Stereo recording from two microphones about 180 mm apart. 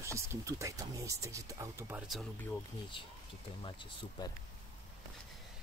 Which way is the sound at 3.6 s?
25° left (ahead or behind).